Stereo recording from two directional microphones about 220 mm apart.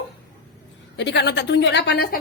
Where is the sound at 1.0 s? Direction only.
50° left (ahead or behind).